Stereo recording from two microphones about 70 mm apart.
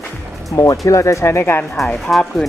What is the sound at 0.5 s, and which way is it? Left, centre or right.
Speech, left.